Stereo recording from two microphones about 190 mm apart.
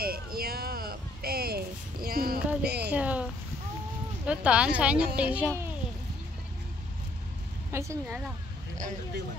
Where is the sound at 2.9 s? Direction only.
5° right (ahead or behind).